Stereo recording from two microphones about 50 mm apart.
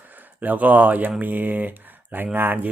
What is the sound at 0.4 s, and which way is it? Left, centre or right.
Speech, right.